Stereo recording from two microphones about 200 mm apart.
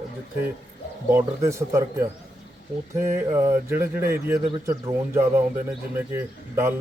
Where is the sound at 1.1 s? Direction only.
15° right (ahead or behind).